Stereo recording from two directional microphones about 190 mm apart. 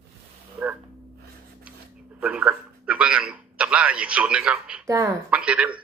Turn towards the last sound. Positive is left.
turn(degrees=-5)  # may be behind; listen again after turning